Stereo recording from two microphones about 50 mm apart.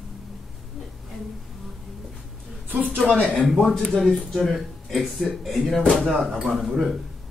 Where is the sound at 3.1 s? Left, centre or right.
Centre.